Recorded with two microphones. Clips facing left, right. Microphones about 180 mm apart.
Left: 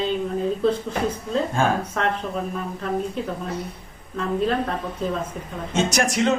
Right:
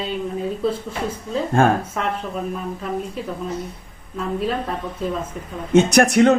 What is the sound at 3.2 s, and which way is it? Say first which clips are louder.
Speech: left 1 dB; 5° right (ahead or behind).